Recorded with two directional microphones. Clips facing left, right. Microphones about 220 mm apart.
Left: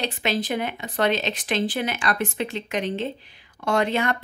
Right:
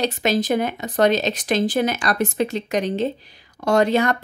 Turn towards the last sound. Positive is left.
turn(degrees=-40)  # may be behind; listen again after turning